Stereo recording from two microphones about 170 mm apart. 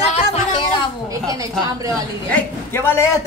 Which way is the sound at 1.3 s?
20° right (ahead or behind).